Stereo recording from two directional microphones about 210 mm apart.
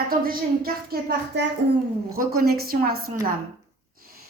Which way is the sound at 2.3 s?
45° right (ahead or behind).